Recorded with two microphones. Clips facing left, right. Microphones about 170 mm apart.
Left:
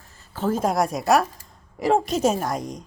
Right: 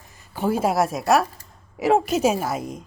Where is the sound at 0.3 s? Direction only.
10° right (ahead or behind).